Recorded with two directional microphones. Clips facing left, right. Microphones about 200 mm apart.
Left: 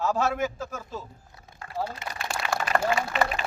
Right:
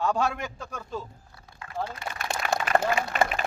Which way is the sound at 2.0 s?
20° left (ahead or behind).